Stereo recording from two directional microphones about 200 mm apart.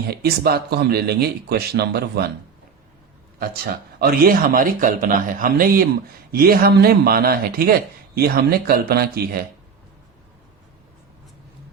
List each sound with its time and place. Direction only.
0.1 s speech: 50° right (ahead or behind)
3.3 s speech: 50° right (ahead or behind)